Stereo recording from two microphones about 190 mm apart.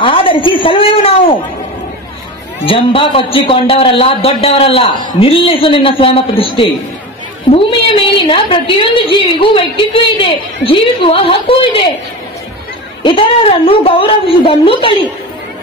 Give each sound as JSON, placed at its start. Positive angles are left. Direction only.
{"t": 0.0, "sound": "a woman's voice", "side_deg": 30}
{"t": 2.6, "sound": "a woman's voice", "side_deg": 30}
{"t": 13.0, "sound": "a woman's voice", "side_deg": 30}